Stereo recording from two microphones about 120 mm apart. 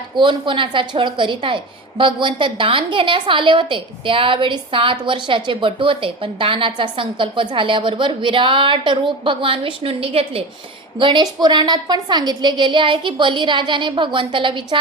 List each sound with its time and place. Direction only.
0.2 s a woman's voice: 45° right (ahead or behind)
11.0 s a woman's voice: 40° right (ahead or behind)